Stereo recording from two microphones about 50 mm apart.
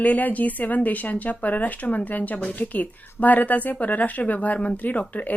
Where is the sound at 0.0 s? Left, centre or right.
Left.